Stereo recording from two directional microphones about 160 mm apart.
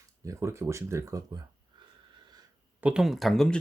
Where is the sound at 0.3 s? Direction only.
15° right (ahead or behind).